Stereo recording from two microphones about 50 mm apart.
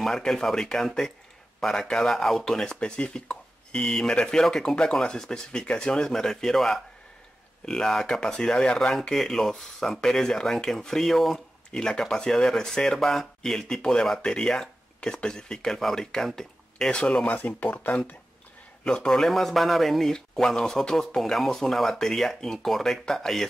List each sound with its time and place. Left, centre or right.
0.0 s speech: centre
17.4 s speech: left
18.9 s speech: centre